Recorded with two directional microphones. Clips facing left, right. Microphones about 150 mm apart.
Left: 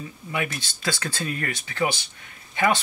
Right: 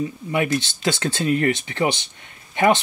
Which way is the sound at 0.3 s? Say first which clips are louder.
Right 7 dB; 20° right (ahead or behind).